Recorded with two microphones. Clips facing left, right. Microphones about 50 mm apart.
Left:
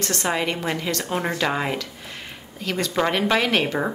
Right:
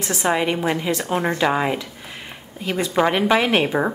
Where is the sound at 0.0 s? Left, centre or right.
Centre.